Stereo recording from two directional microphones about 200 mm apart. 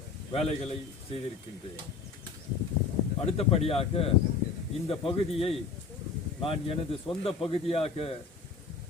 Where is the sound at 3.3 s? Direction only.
30° left (ahead or behind).